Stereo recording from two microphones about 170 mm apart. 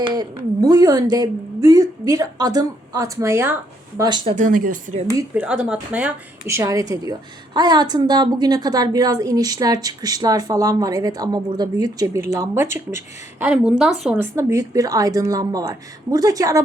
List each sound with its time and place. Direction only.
0.6 s a woman's voice: 20° right (ahead or behind)
4.3 s speech: 50° right (ahead or behind)
5.0 s speech: 15° right (ahead or behind)
6.6 s a woman's voice: 20° right (ahead or behind)
13.4 s speech: 5° right (ahead or behind)
14.2 s a woman's voice: 20° right (ahead or behind)